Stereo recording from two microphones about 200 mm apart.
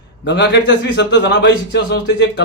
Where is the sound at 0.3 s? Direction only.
60° left (ahead or behind).